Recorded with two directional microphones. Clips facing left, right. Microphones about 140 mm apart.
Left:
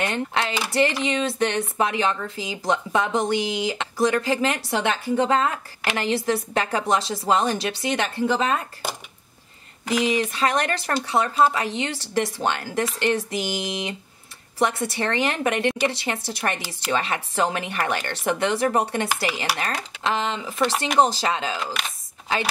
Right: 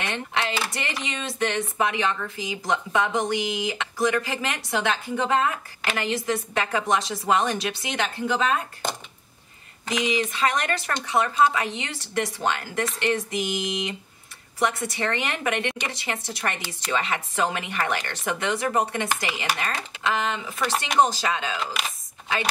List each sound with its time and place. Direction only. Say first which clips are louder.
0.0 s speech: left 3 dB; 35° left (ahead or behind)
8.8 s a sound: right 1 dB; 5° left (ahead or behind)
10.3 s speech: left 2 dB; 35° left (ahead or behind)